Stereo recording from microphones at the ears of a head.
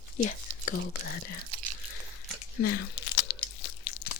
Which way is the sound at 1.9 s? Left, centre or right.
Left.